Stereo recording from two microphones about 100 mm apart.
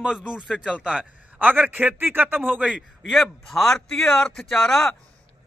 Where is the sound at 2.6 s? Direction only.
5° right (ahead or behind).